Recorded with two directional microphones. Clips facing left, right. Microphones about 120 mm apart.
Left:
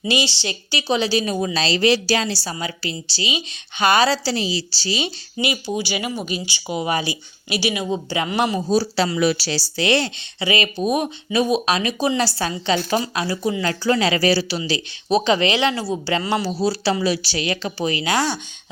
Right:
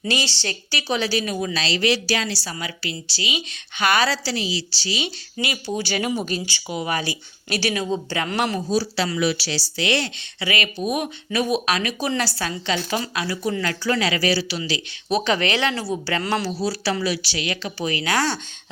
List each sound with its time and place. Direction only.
0.0 s a woman's voice: 15° left (ahead or behind)
4.2 s speech: 35° left (ahead or behind)
5.4 s a woman's voice: 20° left (ahead or behind)
5.7 s speech: 5° left (ahead or behind)
8.7 s a woman's voice: 35° left (ahead or behind)
14.7 s a woman's voice: 25° left (ahead or behind)